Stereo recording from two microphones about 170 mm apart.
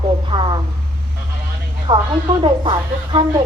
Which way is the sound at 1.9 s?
25° right (ahead or behind).